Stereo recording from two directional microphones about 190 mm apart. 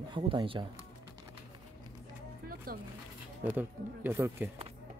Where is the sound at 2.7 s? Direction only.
50° right (ahead or behind).